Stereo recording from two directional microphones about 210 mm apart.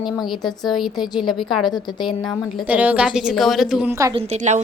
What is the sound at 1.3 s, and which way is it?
Speech, centre (ahead or behind).